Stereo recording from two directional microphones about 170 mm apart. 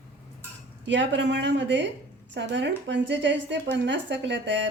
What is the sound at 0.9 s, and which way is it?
Speech, 90° right.